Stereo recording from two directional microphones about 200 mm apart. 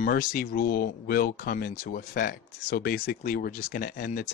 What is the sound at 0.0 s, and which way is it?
Speech, 45° left (ahead or behind).